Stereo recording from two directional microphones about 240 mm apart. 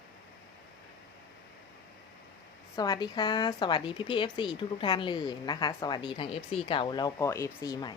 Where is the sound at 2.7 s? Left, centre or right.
Centre.